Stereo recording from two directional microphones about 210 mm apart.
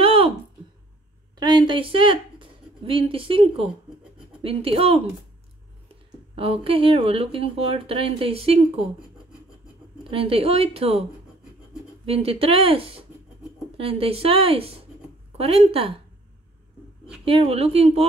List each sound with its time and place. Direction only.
0.0 s a sound: 25° right (ahead or behind)
1.4 s a woman's voice: 20° right (ahead or behind)
6.3 s speech: 25° right (ahead or behind)
10.0 s speech: 25° right (ahead or behind)
12.1 s speech: 25° right (ahead or behind)
17.2 s speech: 25° right (ahead or behind)